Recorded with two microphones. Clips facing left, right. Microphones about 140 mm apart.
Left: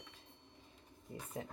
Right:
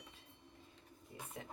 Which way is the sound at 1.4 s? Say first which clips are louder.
Left 6 dB; 35° left (ahead or behind).